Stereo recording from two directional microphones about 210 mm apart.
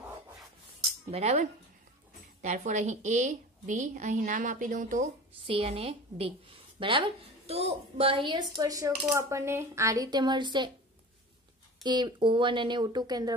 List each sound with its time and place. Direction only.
1.1 s a woman's voice: 30° right (ahead or behind)
5.5 s a woman's voice: 25° right (ahead or behind)
11.8 s a woman's voice: 20° right (ahead or behind)